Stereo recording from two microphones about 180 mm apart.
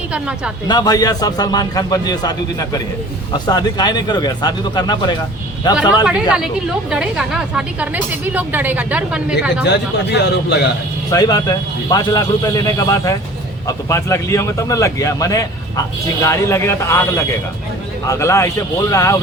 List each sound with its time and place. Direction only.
0.1 s speech: 5° right (ahead or behind)
0.7 s a man's voice: 20° left (ahead or behind)
6.9 s a woman's voice: 5° right (ahead or behind)
9.6 s a man's voice: 70° left (ahead or behind)
11.1 s a man's voice: 20° left (ahead or behind)